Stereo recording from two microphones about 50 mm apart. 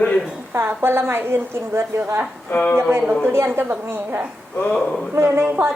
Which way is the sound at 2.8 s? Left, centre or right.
Right.